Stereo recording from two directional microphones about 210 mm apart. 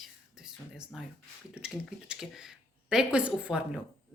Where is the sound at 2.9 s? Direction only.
5° right (ahead or behind).